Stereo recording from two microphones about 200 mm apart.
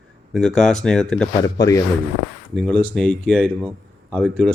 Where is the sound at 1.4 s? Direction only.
15° left (ahead or behind).